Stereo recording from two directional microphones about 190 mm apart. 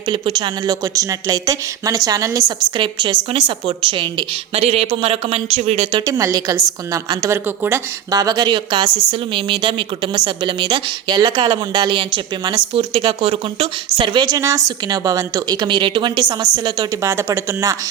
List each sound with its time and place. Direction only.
0.1 s a woman's voice: 25° right (ahead or behind)
6.1 s a woman's voice: 20° right (ahead or behind)